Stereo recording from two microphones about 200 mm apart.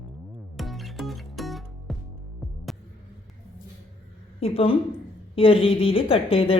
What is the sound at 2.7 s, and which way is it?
Hum, centre (ahead or behind).